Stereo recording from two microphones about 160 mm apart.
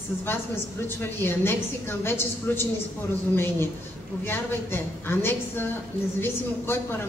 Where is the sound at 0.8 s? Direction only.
15° left (ahead or behind).